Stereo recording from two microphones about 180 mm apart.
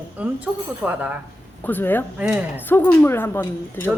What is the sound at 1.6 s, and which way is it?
Speech, 10° left (ahead or behind).